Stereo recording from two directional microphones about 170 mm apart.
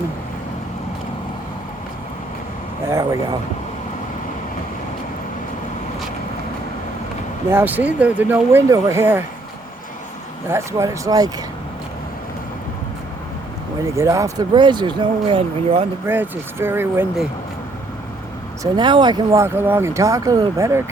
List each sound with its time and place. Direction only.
2.9 s speech: 20° right (ahead or behind)
7.5 s speech: 10° right (ahead or behind)
10.5 s speech: 15° right (ahead or behind)
13.9 s speech: 20° right (ahead or behind)
16.0 s speech: 10° right (ahead or behind)
18.6 s speech: 25° right (ahead or behind)